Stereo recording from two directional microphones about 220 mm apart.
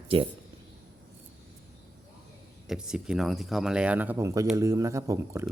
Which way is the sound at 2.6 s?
5° right (ahead or behind).